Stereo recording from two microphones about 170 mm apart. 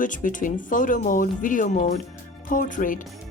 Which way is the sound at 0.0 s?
50° left (ahead or behind).